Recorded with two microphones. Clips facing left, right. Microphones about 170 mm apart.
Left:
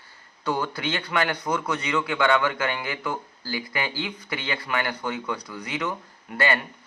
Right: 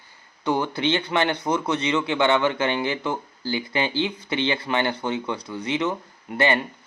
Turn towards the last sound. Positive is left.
turn(degrees=-20)  # may be behind; listen again after turning